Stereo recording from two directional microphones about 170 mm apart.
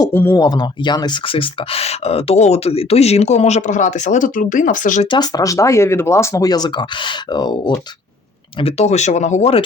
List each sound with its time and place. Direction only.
0.0 s speech: 15° left (ahead or behind); by 5.0 s 50° left (ahead or behind)
5.1 s speech: 25° left (ahead or behind)
8.5 s speech: 40° left (ahead or behind)